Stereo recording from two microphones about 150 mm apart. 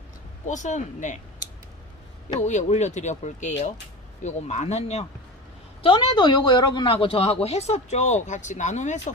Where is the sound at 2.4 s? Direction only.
50° left (ahead or behind).